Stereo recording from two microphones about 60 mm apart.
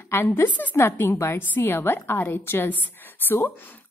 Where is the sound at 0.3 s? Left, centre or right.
Left.